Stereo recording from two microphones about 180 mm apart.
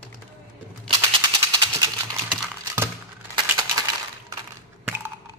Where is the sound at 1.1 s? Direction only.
25° right (ahead or behind).